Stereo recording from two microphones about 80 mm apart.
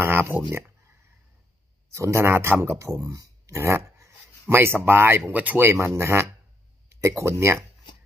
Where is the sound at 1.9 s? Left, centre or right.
Right.